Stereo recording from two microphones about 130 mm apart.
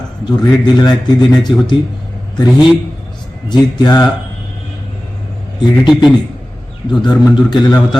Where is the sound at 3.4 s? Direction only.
35° left (ahead or behind).